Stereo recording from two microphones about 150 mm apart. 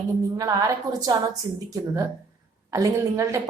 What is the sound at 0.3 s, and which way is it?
A woman's voice, 25° right (ahead or behind).